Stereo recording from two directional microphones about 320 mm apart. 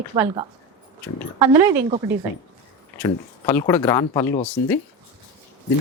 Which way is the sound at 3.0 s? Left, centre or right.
Centre.